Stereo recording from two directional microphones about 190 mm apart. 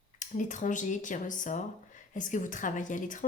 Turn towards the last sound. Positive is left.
turn(degrees=40)  # may be behind; listen again after turning